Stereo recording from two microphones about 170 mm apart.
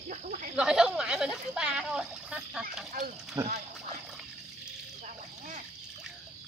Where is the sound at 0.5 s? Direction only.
5° right (ahead or behind).